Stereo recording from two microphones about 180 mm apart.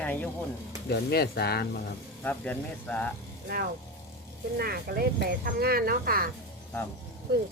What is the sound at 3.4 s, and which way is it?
Speech, 55° right (ahead or behind).